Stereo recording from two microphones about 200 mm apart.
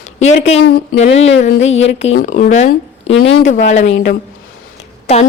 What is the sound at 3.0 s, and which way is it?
Speech, 70° left (ahead or behind).